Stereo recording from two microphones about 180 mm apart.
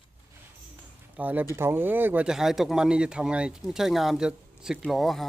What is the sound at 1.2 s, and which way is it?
Speech, 10° right (ahead or behind).